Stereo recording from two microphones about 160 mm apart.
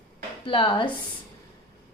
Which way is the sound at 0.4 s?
30° left (ahead or behind).